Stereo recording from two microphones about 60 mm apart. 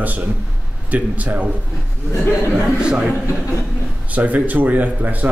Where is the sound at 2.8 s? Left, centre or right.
Centre.